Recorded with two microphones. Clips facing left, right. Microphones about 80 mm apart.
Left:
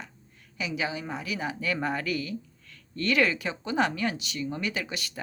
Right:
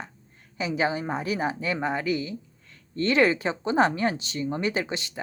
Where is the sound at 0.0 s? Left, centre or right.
Right.